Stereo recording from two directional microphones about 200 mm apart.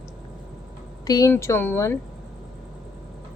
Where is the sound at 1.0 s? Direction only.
15° left (ahead or behind).